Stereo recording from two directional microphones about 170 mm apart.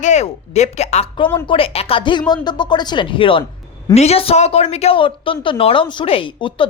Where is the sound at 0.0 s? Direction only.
40° left (ahead or behind).